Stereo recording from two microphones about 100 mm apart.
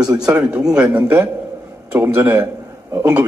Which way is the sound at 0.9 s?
20° right (ahead or behind).